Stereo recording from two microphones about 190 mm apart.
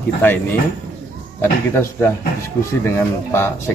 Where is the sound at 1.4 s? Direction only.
10° left (ahead or behind).